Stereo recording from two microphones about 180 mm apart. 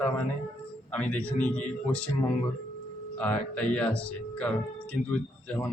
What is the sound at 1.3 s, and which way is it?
Speech, 45° left (ahead or behind).